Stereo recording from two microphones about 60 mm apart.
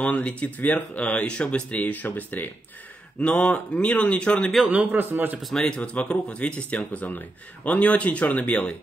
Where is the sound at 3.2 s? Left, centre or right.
Centre.